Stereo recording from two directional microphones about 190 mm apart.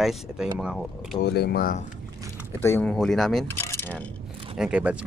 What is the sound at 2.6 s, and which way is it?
Speech, 15° left (ahead or behind).